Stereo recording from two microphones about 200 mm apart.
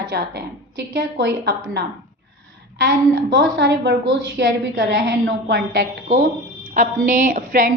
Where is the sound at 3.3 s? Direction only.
60° right (ahead or behind).